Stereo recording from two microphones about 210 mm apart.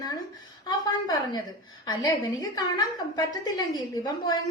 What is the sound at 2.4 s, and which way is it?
A woman's voice, 20° left (ahead or behind).